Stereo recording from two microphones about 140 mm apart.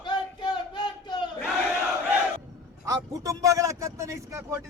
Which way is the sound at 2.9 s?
25° right (ahead or behind).